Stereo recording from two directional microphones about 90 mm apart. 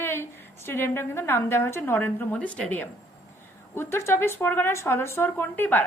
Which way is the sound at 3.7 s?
30° left (ahead or behind).